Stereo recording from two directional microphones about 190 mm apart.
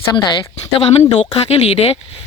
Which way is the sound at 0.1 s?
25° left (ahead or behind).